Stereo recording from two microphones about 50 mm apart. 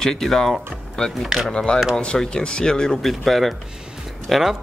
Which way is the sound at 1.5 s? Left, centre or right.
Centre.